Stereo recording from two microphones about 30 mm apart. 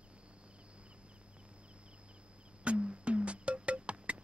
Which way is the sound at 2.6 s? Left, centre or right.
Right.